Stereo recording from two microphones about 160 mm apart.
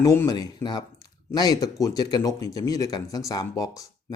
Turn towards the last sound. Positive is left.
turn(degrees=20)  # may be behind; listen again after turning